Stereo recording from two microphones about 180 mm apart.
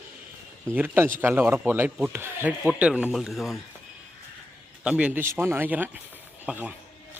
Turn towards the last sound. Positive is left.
turn(degrees=-10)  # may be behind; listen again after turning